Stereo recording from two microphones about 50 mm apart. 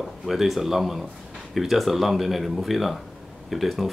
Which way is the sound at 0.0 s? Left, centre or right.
Centre.